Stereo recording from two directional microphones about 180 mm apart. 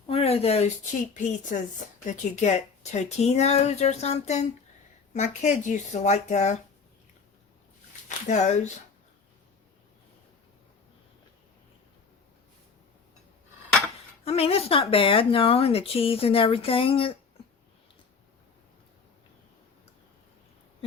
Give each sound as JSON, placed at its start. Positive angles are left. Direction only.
{"t": 0.1, "sound": "a sound", "side_deg": 35}
{"t": 1.1, "sound": "a woman's voice", "side_deg": 45}
{"t": 8.0, "sound": "speech", "side_deg": 40}
{"t": 14.3, "sound": "speech", "side_deg": 35}